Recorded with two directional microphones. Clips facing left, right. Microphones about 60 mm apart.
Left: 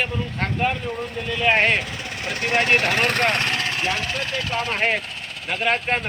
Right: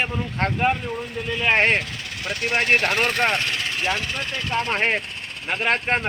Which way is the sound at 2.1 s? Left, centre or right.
Left.